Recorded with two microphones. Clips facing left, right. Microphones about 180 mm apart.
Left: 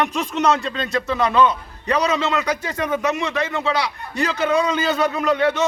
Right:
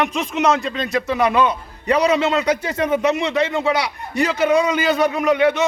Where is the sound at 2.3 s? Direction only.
25° right (ahead or behind).